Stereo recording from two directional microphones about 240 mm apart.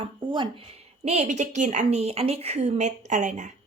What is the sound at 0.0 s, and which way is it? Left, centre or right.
Speech, centre.